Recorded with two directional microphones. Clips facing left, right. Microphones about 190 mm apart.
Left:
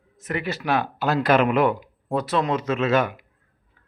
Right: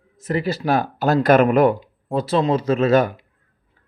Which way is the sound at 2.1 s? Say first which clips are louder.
Right 4 dB; 30° right (ahead or behind).